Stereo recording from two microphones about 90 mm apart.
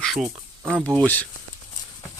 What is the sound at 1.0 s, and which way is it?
Speech, 20° left (ahead or behind).